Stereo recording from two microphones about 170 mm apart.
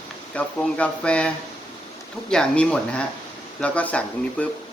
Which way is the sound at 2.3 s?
5° left (ahead or behind).